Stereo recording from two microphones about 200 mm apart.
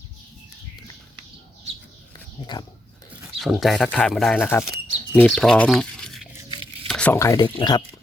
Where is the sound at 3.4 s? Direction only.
Centre (ahead or behind).